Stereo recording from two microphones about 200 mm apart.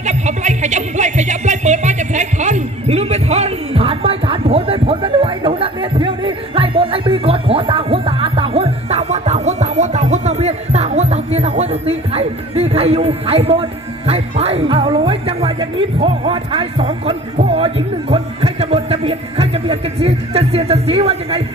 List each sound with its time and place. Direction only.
0.0 s music: 35° right (ahead or behind)
15.0 s a man's voice: 30° right (ahead or behind)